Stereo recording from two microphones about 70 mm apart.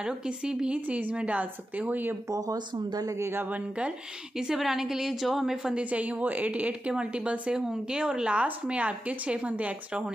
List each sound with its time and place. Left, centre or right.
0.0 s a woman's voice: centre
2.5 s speech: right
4.4 s a woman's voice: centre